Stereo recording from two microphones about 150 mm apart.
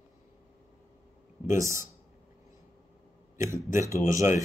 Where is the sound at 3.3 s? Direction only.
20° right (ahead or behind).